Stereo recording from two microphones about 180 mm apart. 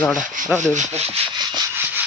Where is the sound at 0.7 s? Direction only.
40° right (ahead or behind).